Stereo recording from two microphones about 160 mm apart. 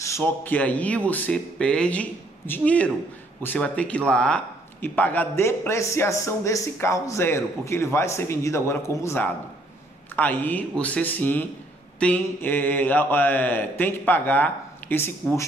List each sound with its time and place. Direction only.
0.0 s speech: 15° left (ahead or behind)